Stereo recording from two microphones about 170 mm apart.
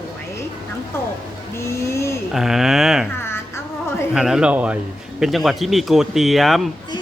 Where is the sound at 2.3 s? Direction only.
Centre (ahead or behind).